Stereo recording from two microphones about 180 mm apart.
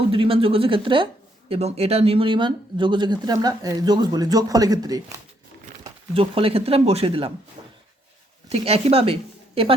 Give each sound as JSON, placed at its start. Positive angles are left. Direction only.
{"t": 0.1, "sound": "speech", "side_deg": -30}
{"t": 5.8, "sound": "speech", "side_deg": -30}
{"t": 7.6, "sound": "a sound", "side_deg": -25}
{"t": 8.4, "sound": "speech", "side_deg": -35}